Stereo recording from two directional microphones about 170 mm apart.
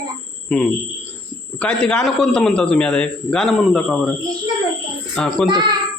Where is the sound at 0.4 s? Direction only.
5° left (ahead or behind).